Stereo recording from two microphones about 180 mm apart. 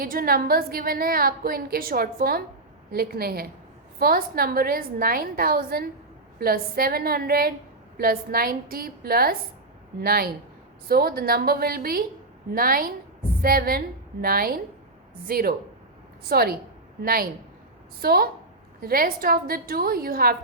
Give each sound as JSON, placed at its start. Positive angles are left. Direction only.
{"t": 0.0, "sound": "a woman's voice", "side_deg": -55}